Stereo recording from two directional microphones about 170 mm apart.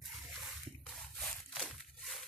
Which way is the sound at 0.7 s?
Centre (ahead or behind).